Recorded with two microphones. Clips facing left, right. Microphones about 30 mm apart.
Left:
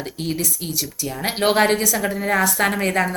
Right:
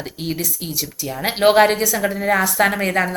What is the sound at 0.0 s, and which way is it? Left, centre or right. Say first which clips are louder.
Speech: even; centre.